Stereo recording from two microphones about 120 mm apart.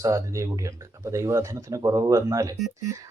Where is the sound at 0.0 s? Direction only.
25° right (ahead or behind).